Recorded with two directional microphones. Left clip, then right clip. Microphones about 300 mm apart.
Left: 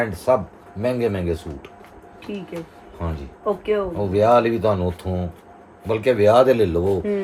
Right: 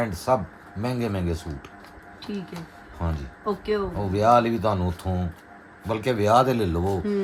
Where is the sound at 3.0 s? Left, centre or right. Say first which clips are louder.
Left 4 dB; centre.